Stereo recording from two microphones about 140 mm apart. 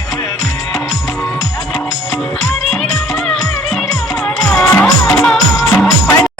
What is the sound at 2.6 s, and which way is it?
Music, centre (ahead or behind).